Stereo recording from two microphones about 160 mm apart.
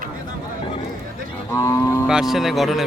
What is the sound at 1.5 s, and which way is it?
Cattle, 15° left (ahead or behind).